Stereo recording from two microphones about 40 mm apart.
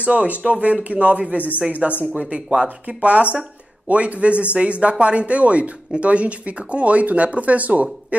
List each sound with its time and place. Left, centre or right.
0.0 s speech: right